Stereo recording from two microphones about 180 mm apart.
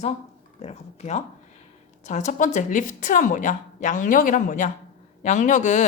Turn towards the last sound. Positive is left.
turn(degrees=40)  # may be behind; listen again after turning